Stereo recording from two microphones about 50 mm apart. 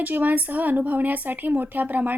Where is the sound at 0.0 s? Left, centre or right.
Right.